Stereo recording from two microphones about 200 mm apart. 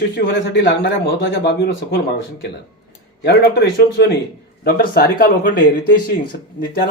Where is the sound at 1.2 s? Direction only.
60° left (ahead or behind).